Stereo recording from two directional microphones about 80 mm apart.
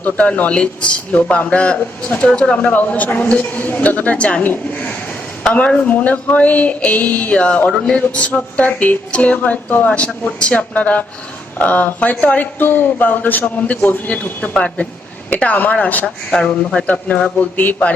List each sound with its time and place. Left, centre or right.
0.0 s a man's voice: centre
16.0 s a man's voice: centre